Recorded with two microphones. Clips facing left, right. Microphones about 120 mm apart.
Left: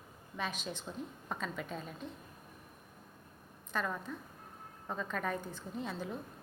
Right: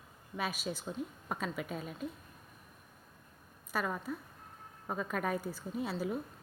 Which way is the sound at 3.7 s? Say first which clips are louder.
Right 2 dB; 10° right (ahead or behind).